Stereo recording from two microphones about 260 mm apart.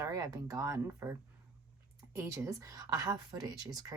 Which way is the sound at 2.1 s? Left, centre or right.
Centre.